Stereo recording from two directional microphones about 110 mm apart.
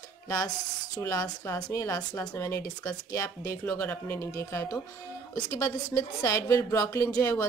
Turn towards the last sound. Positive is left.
turn(degrees=30)  # may be behind; listen again after turning